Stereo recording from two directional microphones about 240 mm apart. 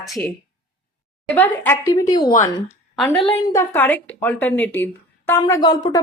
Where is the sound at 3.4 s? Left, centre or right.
Centre.